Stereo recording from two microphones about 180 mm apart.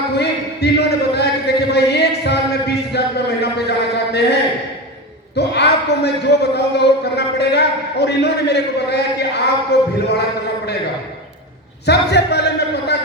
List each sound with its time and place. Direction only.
0.1 s a sound: 70° left (ahead or behind)
5.4 s a man's voice: 70° left (ahead or behind)
11.9 s speech: 65° left (ahead or behind)